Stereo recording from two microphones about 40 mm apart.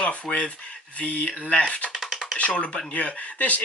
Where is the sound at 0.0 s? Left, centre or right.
Left.